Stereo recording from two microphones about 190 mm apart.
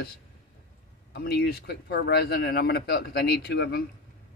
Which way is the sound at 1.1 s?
55° left (ahead or behind).